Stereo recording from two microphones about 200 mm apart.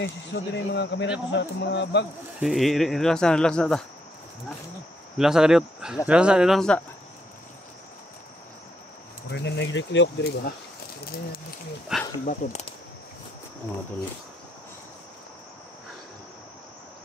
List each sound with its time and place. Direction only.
0.0 s speech: 60° left (ahead or behind)
2.4 s speech: centre (ahead or behind)
5.1 s speech: 5° right (ahead or behind)
9.3 s speech: 60° left (ahead or behind)
11.9 s speech: 5° right (ahead or behind)
12.3 s speech: 35° left (ahead or behind)